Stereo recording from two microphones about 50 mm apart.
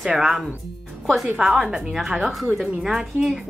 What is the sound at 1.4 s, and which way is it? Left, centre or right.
A woman's voice, centre.